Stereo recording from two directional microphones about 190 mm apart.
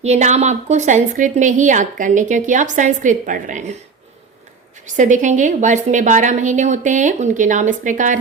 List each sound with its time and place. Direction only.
0.0 s a woman's voice: 35° right (ahead or behind)
4.9 s a woman's voice: 40° right (ahead or behind)